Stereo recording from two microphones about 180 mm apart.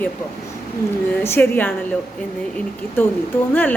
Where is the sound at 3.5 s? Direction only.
10° left (ahead or behind).